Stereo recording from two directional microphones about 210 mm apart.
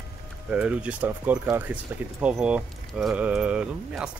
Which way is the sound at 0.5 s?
5° right (ahead or behind).